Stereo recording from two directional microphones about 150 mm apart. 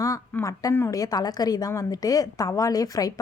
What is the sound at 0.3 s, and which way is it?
A woman's voice, 20° left (ahead or behind).